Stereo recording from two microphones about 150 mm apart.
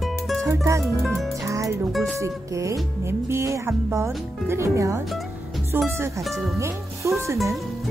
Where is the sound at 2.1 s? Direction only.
20° right (ahead or behind).